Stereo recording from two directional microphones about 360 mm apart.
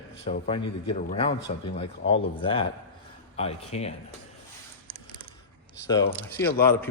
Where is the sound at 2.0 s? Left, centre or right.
Left.